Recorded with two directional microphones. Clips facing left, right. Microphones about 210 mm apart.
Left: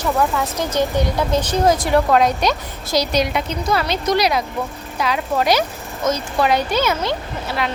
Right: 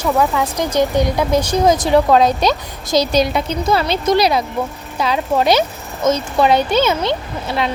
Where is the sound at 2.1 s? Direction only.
30° right (ahead or behind).